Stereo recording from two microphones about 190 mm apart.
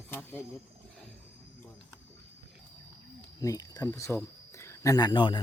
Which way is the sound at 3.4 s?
20° left (ahead or behind).